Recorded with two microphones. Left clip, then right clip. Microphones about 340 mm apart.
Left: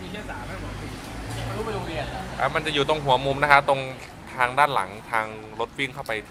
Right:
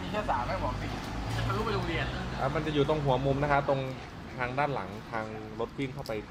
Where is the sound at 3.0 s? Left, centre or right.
Left.